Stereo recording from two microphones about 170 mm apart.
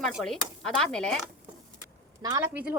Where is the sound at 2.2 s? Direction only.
25° right (ahead or behind).